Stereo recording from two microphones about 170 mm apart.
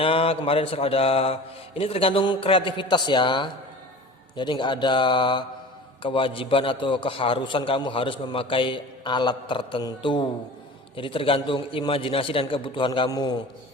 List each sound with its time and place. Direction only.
0.0 s a man's voice: 35° left (ahead or behind)